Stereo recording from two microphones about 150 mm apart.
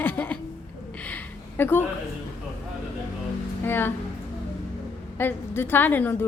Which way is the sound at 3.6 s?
15° left (ahead or behind).